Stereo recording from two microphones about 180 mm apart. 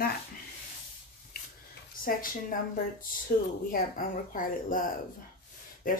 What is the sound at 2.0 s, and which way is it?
Speech, 50° left (ahead or behind).